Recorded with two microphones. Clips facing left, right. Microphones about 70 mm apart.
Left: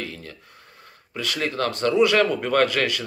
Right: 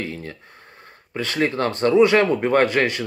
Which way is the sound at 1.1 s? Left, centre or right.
Right.